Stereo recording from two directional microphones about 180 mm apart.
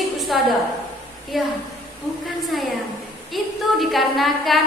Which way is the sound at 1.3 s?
Centre (ahead or behind).